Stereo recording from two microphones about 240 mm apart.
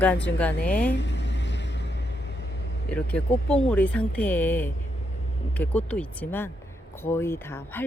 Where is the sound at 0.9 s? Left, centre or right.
Left.